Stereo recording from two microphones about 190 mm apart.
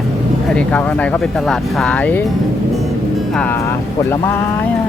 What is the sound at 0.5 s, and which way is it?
Speech, 10° left (ahead or behind).